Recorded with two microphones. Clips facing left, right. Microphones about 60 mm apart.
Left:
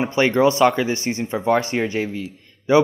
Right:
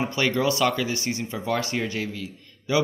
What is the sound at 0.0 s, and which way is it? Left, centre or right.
Speech, left.